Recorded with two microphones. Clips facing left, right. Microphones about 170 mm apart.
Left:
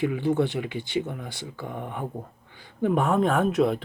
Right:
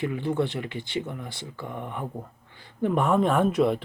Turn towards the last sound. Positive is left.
turn(degrees=0)  # may be behind; listen again after turning